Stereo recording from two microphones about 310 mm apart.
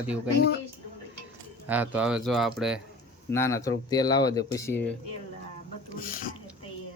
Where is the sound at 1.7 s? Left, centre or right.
Centre.